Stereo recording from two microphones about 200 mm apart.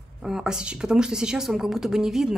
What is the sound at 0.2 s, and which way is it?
Speech, 5° right (ahead or behind).